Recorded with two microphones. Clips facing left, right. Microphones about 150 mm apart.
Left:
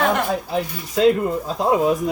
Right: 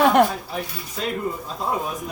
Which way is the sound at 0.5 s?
90° left.